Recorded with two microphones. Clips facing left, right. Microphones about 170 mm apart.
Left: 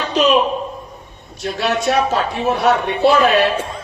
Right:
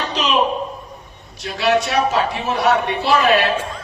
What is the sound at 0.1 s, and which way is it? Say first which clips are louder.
Speech: left 10 dB; 50° left (ahead or behind).